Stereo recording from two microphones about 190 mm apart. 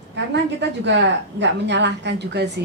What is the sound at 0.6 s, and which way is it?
A woman's voice, 65° right (ahead or behind).